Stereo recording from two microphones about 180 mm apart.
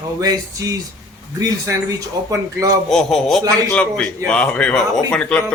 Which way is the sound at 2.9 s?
Centre (ahead or behind).